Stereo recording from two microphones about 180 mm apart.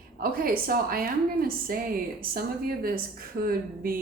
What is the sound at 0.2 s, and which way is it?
A woman's voice, 55° right (ahead or behind).